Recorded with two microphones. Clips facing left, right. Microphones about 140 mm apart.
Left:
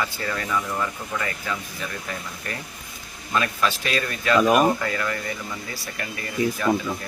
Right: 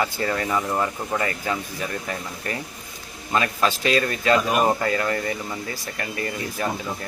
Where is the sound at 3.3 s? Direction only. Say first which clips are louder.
Right 2 dB; 35° right (ahead or behind).